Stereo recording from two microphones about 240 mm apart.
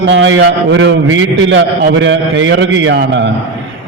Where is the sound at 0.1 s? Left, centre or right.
Right.